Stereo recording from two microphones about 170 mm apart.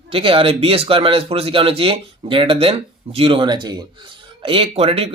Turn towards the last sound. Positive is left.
turn(degrees=-35)  # may be behind; listen again after turning